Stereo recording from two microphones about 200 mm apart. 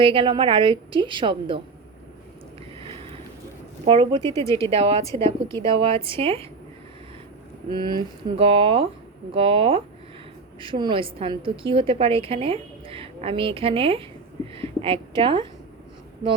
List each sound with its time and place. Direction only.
0.0 s a woman's voice: 25° right (ahead or behind)
3.8 s a woman's voice: 25° right (ahead or behind)
4.4 s a woman's voice: 15° left (ahead or behind)
4.7 s a woman's voice: 30° right (ahead or behind)
5.2 s a woman's voice: 15° left (ahead or behind)
5.6 s a woman's voice: 25° right (ahead or behind)
7.7 s a woman's voice: 20° right (ahead or behind)